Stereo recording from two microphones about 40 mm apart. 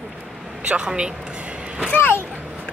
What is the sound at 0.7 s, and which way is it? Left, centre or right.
Speech, right.